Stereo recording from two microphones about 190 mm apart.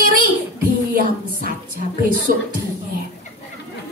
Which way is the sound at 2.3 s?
50° right (ahead or behind).